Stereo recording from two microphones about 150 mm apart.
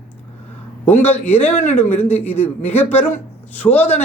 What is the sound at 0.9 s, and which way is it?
Speech, 10° left (ahead or behind).